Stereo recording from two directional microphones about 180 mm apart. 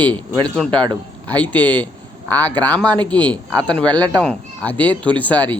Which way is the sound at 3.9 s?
25° right (ahead or behind).